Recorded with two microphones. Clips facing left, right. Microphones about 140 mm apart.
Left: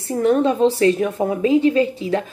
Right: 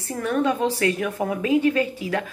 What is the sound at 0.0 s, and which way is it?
Speech, 25° left (ahead or behind).